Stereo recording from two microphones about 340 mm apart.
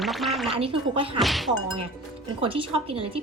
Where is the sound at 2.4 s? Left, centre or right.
Centre.